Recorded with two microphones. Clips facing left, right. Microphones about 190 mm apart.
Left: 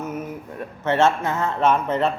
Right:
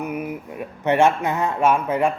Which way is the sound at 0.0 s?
10° right (ahead or behind).